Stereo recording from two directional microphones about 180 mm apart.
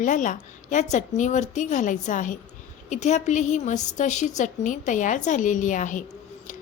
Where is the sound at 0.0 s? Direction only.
45° left (ahead or behind).